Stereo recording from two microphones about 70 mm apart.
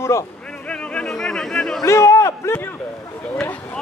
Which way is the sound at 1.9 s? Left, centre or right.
Left.